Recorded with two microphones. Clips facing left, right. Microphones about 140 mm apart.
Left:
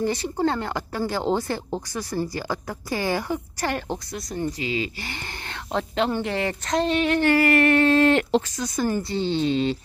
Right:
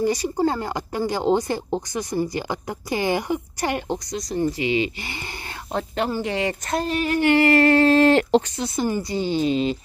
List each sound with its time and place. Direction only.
0.0 s speech: 10° right (ahead or behind)
4.6 s speech: 35° left (ahead or behind)
5.7 s speech: 5° right (ahead or behind)
7.2 s speech: 25° right (ahead or behind)
8.8 s speech: 10° right (ahead or behind)